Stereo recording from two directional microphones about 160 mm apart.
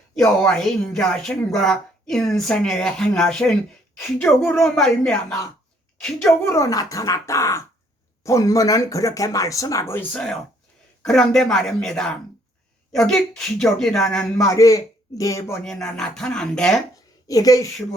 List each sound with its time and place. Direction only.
0.2 s speech: 5° left (ahead or behind)
6.4 s speech: 20° left (ahead or behind); by 14.4 s 5° left (ahead or behind)
14.5 s speech: 20° left (ahead or behind)
15.6 s speech: 5° left (ahead or behind)
17.2 s speech: 20° left (ahead or behind)